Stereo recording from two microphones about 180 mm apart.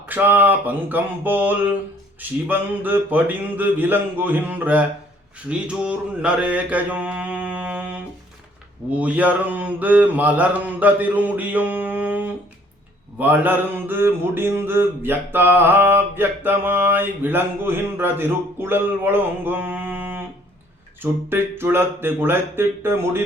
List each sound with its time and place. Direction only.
0.1 s mantra: 10° right (ahead or behind)